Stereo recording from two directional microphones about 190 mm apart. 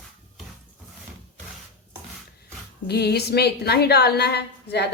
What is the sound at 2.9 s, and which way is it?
A woman's voice, 60° left (ahead or behind).